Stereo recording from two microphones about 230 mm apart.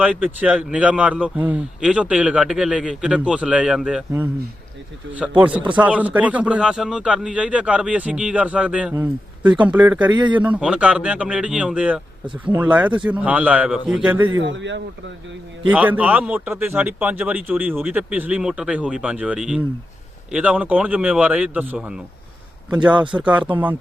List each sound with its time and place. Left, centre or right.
0.0 s a man's voice: centre
5.4 s a man's voice: centre
10.0 s a man's voice: right
10.3 s a man's voice: centre
12.2 s a man's voice: right
12.5 s speech: centre
14.3 s a man's voice: right
15.7 s a man's voice: centre